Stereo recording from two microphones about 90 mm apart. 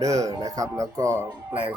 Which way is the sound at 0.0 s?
40° right (ahead or behind).